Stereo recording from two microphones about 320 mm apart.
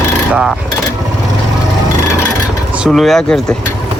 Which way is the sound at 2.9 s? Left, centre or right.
Centre.